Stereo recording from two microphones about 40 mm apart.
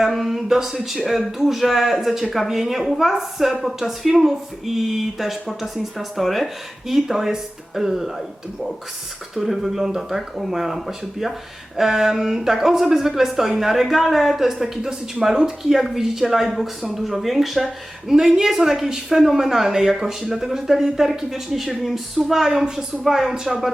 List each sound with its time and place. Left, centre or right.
0.0 s a woman's voice: centre
9.3 s a woman's voice: centre
22.6 s a woman's voice: centre
23.0 s a woman's voice: centre